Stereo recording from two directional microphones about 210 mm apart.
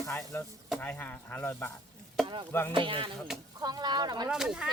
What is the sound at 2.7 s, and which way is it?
Speech, 25° right (ahead or behind).